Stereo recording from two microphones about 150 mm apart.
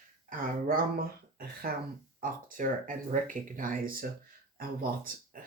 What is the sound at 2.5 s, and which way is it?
Speech, 60° right (ahead or behind).